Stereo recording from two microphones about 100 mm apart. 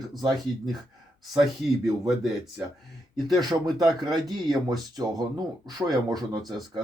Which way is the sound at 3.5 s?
50° right (ahead or behind).